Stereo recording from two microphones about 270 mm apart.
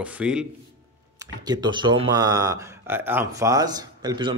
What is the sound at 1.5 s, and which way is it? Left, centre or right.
Speech, centre.